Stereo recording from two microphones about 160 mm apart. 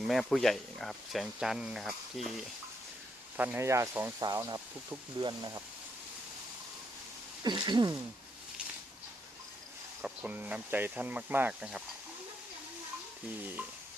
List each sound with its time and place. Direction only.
0.1 s speech: centre (ahead or behind)
3.3 s speech: 10° right (ahead or behind)
7.4 s a sound: 25° right (ahead or behind)
10.0 s speech: 10° right (ahead or behind)
13.4 s speech: 10° right (ahead or behind)